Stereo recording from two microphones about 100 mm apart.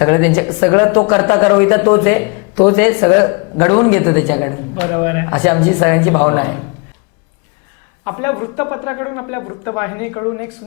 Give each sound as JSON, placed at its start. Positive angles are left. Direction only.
{"t": 0.0, "sound": "speech", "side_deg": 25}
{"t": 8.0, "sound": "speech", "side_deg": 25}